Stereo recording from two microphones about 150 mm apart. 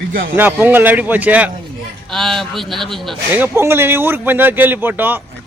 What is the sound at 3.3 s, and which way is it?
Speech, 15° right (ahead or behind).